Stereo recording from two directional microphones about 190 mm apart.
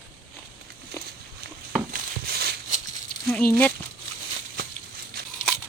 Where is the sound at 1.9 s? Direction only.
55° right (ahead or behind).